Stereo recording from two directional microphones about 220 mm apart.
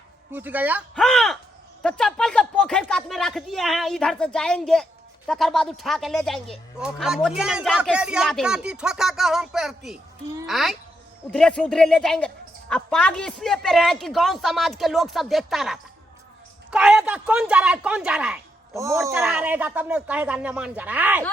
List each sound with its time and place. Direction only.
0.3 s speech: 10° right (ahead or behind)